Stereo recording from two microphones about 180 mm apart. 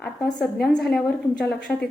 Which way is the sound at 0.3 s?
5° left (ahead or behind).